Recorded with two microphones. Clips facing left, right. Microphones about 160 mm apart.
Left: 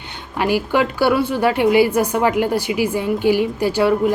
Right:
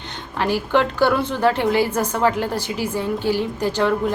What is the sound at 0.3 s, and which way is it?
A woman's voice, 10° left (ahead or behind).